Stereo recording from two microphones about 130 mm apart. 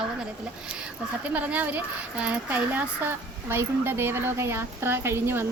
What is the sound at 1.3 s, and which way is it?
Speech, 10° right (ahead or behind).